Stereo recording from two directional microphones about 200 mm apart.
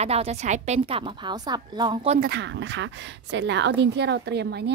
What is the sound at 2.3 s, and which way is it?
Speech, 60° right (ahead or behind).